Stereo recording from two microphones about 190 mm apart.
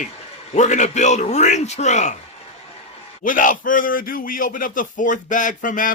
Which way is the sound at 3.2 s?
45° left (ahead or behind).